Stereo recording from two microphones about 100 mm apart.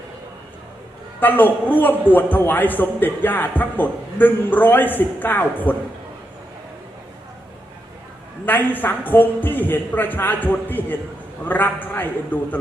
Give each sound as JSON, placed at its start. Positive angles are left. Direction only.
{"t": 1.2, "sound": "a man's voice", "side_deg": 20}
{"t": 8.4, "sound": "a man's voice", "side_deg": 20}